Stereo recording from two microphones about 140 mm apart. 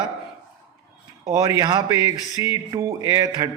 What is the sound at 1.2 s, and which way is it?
A man's voice, 25° right (ahead or behind).